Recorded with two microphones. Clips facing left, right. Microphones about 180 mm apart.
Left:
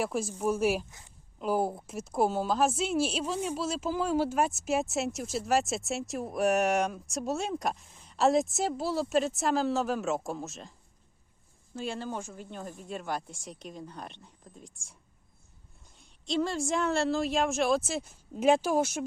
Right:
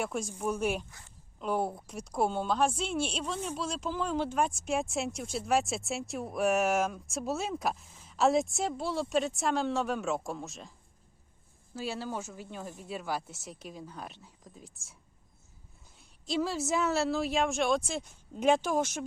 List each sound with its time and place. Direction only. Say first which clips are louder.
0.0 s speech: left 3 dB; 5° left (ahead or behind)
0.9 s a woman's voice: even; 20° left (ahead or behind)
1.4 s speech: left 3 dB; 5° left (ahead or behind)
16.0 s speech: left 2 dB; 5° right (ahead or behind)